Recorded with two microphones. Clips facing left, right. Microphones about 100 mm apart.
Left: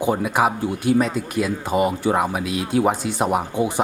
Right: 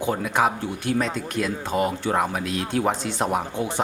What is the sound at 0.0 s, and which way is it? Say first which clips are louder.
Speech: left 3 dB; 10° left (ahead or behind).